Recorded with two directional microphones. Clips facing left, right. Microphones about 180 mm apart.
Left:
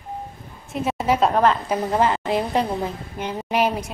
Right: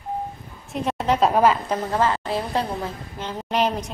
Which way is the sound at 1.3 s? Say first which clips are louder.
Even; 5° right (ahead or behind).